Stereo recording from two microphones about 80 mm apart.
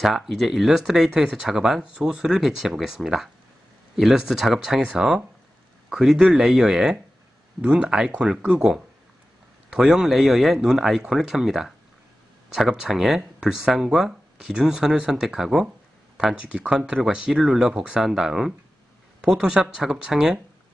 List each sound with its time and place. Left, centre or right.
0.0 s speech: centre